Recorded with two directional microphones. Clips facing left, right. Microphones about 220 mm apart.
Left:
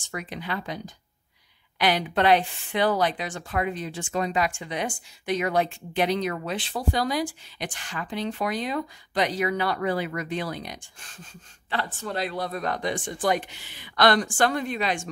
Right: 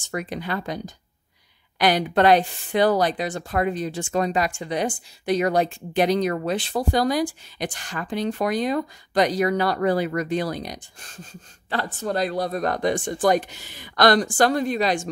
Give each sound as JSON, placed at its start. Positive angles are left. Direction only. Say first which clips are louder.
{"t": 0.1, "sound": "speech", "louder": "right 5 dB", "side_deg": -45}